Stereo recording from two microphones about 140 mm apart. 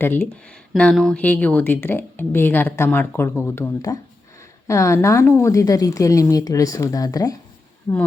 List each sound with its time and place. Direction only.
0.0 s speech: 15° left (ahead or behind)
0.7 s a woman's voice: 5° left (ahead or behind); by 7.3 s 25° left (ahead or behind)
7.9 s speech: 15° left (ahead or behind)